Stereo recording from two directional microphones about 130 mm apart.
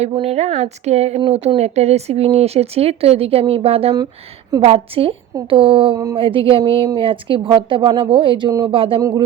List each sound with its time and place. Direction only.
0.0 s a woman's voice: 50° right (ahead or behind)
8.4 s speech: 30° right (ahead or behind)
8.7 s speech: 45° right (ahead or behind)
9.0 s speech: 30° right (ahead or behind)